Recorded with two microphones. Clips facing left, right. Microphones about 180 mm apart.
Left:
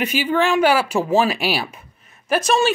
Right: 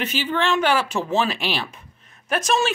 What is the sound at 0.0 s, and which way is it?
A woman's voice, 10° left (ahead or behind).